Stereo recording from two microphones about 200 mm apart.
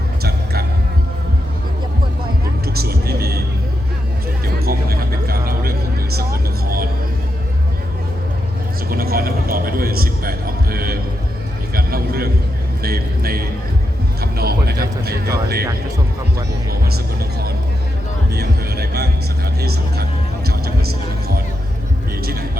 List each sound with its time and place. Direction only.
0.2 s a sound: 50° right (ahead or behind)
2.6 s vehicle: 50° right (ahead or behind)
4.4 s music: 50° right (ahead or behind)
8.9 s music: 50° right (ahead or behind)
11.7 s a sound: 50° right (ahead or behind)
14.2 s music: 50° right (ahead or behind)
18.3 s music: 55° right (ahead or behind)
19.6 s a sound: 50° right (ahead or behind)
22.2 s vehicle: 50° right (ahead or behind)